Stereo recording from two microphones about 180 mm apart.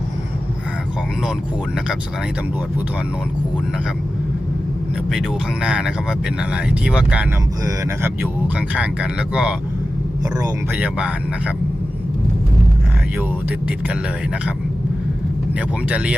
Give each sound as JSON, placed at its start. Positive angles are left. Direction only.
{"t": 5.1, "sound": "speech", "side_deg": -5}
{"t": 10.2, "sound": "speech", "side_deg": -20}
{"t": 10.7, "sound": "speech", "side_deg": -10}
{"t": 15.5, "sound": "speech", "side_deg": -5}